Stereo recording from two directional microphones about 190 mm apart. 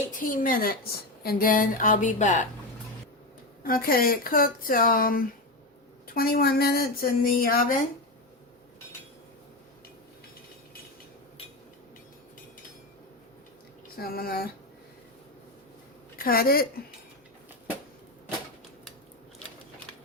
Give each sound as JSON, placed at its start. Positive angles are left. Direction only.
{"t": 0.2, "sound": "speech", "side_deg": 45}
{"t": 3.6, "sound": "speech", "side_deg": 50}
{"t": 14.0, "sound": "speech", "side_deg": 50}
{"t": 16.1, "sound": "speech", "side_deg": 50}